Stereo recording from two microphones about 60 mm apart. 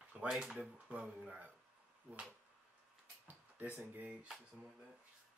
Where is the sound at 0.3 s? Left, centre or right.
Centre.